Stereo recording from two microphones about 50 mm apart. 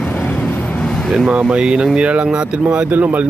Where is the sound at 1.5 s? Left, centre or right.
Centre.